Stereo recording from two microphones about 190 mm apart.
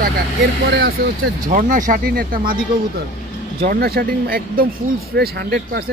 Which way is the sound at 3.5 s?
55° right (ahead or behind).